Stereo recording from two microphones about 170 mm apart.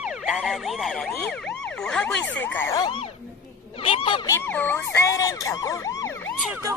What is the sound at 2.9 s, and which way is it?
Speech, 30° left (ahead or behind).